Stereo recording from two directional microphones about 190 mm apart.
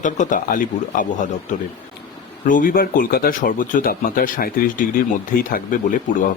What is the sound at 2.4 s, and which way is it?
Speech, 45° left (ahead or behind).